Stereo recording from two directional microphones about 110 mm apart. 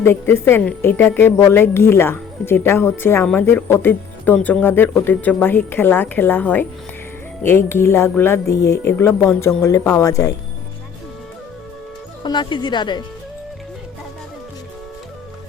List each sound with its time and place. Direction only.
0.0 s a woman's voice: 20° left (ahead or behind)
12.2 s speech: 45° left (ahead or behind)